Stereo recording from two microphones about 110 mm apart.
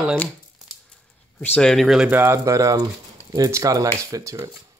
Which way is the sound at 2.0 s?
20° right (ahead or behind).